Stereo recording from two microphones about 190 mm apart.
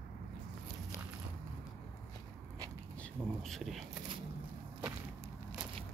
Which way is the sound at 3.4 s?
Centre (ahead or behind).